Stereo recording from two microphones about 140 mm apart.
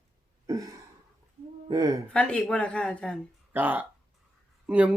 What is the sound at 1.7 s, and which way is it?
Speech, 30° right (ahead or behind).